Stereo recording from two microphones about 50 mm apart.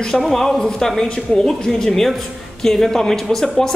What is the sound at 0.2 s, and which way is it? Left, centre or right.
A man's voice, centre.